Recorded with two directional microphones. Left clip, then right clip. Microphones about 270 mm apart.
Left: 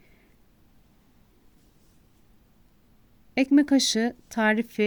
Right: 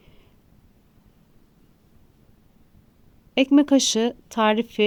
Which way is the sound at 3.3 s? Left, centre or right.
Left.